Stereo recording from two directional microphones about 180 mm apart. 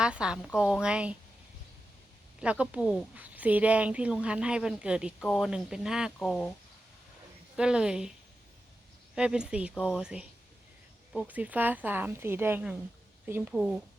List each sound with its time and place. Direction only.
0.0 s speech: 5° right (ahead or behind)
2.4 s speech: 5° right (ahead or behind)
7.5 s speech: 5° right (ahead or behind)
9.1 s a woman's voice: 5° right (ahead or behind)